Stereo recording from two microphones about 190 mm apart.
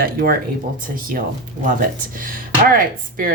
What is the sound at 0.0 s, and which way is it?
Speech, 50° right (ahead or behind).